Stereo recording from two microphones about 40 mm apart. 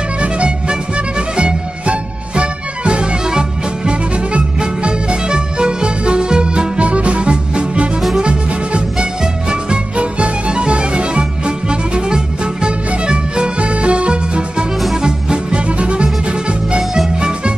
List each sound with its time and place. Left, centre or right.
0.2 s music: right
6.8 s music: right